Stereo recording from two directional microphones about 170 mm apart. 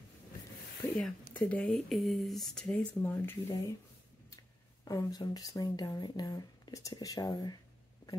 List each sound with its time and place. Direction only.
0.9 s speech: 10° left (ahead or behind)
4.8 s speech: 20° left (ahead or behind)